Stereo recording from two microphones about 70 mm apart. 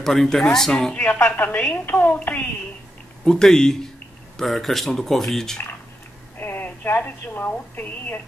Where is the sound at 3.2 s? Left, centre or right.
Centre.